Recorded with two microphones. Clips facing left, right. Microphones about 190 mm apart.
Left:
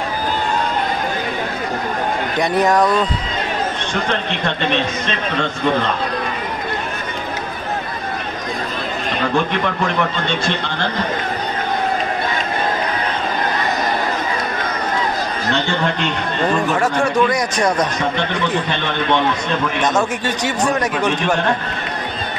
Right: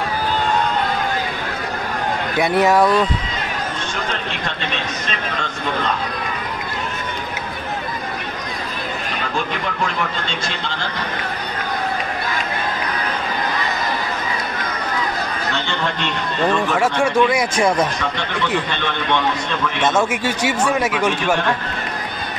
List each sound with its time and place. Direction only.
2.3 s speech: 5° right (ahead or behind)
16.7 s speech: 10° right (ahead or behind)
20.1 s speech: 10° right (ahead or behind)